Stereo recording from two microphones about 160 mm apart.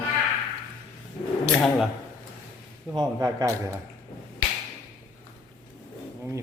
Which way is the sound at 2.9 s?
25° right (ahead or behind).